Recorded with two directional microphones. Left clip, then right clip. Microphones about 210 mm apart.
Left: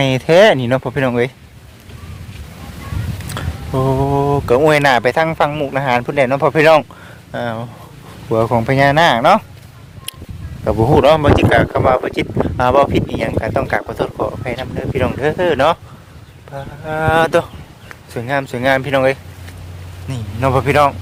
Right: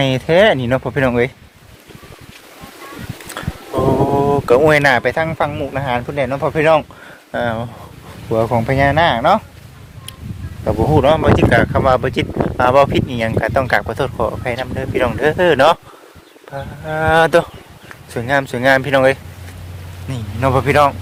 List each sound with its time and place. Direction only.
0.3 s speech: 10° left (ahead or behind)
3.4 s music: 5° left (ahead or behind)
4.1 s speech: 5° right (ahead or behind)
4.7 s speech: 5° left (ahead or behind)
5.0 s speech: 25° left (ahead or behind)
7.3 s speech: 10° right (ahead or behind)
8.3 s speech: 15° left (ahead or behind)
10.6 s speech: 20° left (ahead or behind)
11.9 s speech: centre (ahead or behind)
16.8 s speech: centre (ahead or behind)
17.1 s speech: 10° right (ahead or behind)
20.1 s speech: 5° left (ahead or behind)